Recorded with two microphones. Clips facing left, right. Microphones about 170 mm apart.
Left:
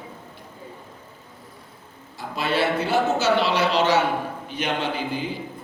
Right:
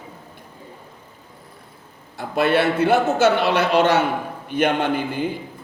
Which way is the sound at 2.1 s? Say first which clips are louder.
Right 6 dB; 60° right (ahead or behind).